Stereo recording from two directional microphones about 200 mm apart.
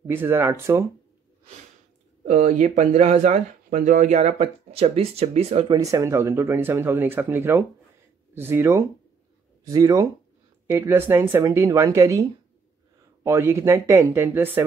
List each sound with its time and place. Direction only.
0.0 s speech: 10° right (ahead or behind)
2.2 s speech: 40° right (ahead or behind)
5.8 s speech: 15° right (ahead or behind)